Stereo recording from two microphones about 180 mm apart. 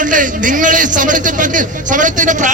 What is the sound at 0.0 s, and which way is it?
A man's voice, 45° right (ahead or behind).